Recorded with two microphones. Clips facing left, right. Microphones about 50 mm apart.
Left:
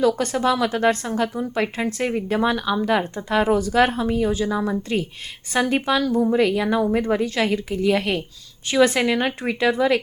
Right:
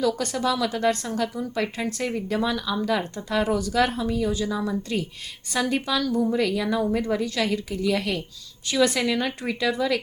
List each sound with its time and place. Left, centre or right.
0.0 s speech: left